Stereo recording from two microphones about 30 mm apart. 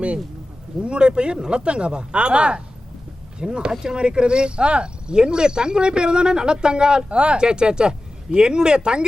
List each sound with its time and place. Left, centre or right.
0.8 s speech: right